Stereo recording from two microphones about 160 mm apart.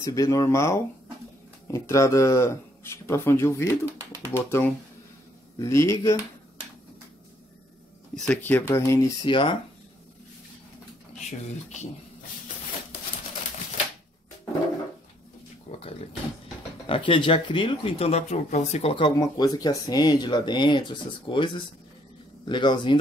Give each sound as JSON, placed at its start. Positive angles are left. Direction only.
{"t": 0.0, "sound": "speech", "side_deg": 20}
{"t": 8.3, "sound": "speech", "side_deg": 10}
{"t": 9.2, "sound": "speech", "side_deg": 30}
{"t": 11.1, "sound": "speech", "side_deg": 45}
{"t": 15.7, "sound": "a sound", "side_deg": 45}
{"t": 16.8, "sound": "speech", "side_deg": 35}